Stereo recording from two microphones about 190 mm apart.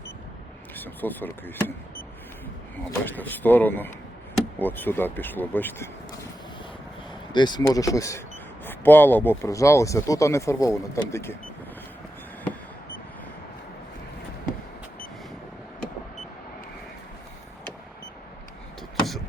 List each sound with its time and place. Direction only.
0.8 s speech: 10° left (ahead or behind)
3.0 s speech: 10° left (ahead or behind)
7.1 s speech: 25° left (ahead or behind)